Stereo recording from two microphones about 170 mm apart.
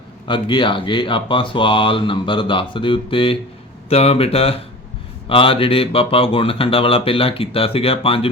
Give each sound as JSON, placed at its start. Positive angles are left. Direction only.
{"t": 0.3, "sound": "speech", "side_deg": 30}